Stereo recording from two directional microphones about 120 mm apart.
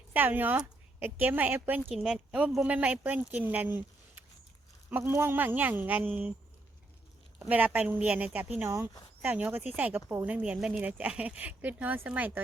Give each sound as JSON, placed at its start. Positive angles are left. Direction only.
{"t": 0.1, "sound": "speech", "side_deg": -15}
{"t": 1.8, "sound": "speech", "side_deg": 0}
{"t": 7.3, "sound": "speech", "side_deg": -15}